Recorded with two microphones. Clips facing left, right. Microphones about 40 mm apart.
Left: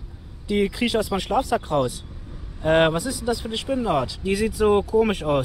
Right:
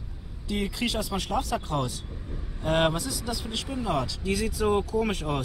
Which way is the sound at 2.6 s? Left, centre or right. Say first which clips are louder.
Left 6 dB; left.